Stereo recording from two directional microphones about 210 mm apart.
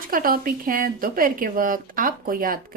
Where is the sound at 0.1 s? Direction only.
40° right (ahead or behind).